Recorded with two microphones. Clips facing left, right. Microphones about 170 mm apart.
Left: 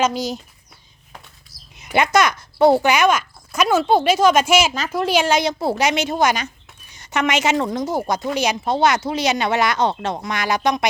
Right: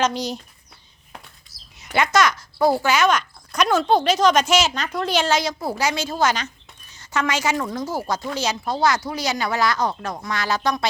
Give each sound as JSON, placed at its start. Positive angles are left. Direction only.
{"t": 0.0, "sound": "speech", "side_deg": 5}
{"t": 1.5, "sound": "a sound", "side_deg": 0}
{"t": 1.9, "sound": "a woman's voice", "side_deg": 15}